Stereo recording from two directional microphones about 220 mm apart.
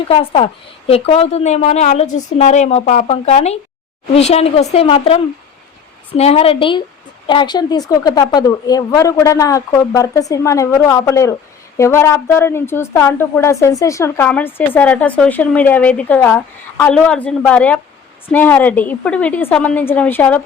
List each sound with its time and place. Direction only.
0.1 s a woman's voice: 25° left (ahead or behind); by 20.4 s 10° left (ahead or behind)